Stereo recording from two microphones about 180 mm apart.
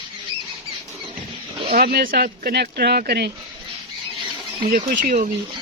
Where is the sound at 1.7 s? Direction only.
55° right (ahead or behind).